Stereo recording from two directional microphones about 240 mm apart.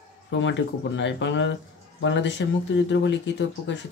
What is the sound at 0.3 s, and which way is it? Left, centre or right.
A man's voice, left.